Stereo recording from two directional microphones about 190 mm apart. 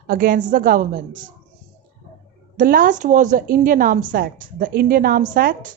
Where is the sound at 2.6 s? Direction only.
45° right (ahead or behind).